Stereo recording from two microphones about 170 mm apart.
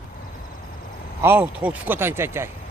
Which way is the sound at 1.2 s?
10° right (ahead or behind).